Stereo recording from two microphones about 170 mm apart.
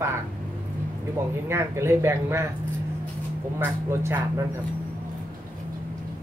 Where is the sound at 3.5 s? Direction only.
15° right (ahead or behind).